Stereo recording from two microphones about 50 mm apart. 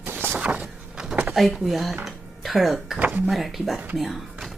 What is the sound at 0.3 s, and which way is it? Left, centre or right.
Vehicle, right.